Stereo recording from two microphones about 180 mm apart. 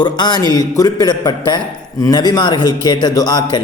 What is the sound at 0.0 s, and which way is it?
A man's voice, 25° left (ahead or behind).